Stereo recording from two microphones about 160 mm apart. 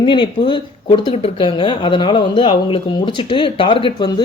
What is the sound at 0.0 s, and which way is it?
Speech, 30° left (ahead or behind).